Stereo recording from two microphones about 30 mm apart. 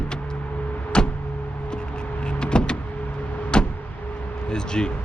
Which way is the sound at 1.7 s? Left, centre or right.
Left.